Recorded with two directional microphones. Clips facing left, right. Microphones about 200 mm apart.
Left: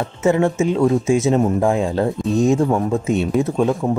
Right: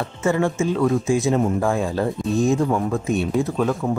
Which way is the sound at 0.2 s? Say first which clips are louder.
Left 4 dB; 20° left (ahead or behind).